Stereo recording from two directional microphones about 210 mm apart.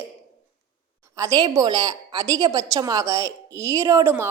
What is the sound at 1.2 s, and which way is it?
A woman's voice, 15° right (ahead or behind).